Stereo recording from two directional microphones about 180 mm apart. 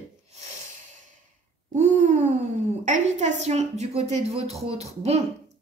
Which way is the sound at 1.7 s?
40° right (ahead or behind).